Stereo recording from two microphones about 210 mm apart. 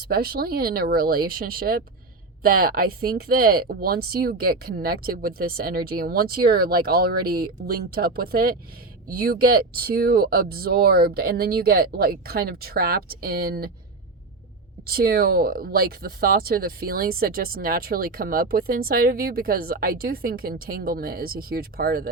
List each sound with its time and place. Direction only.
0.1 s speech: 45° right (ahead or behind)
14.8 s speech: 45° right (ahead or behind)